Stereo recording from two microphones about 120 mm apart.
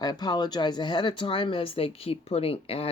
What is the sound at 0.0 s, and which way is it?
Speech, 35° left (ahead or behind).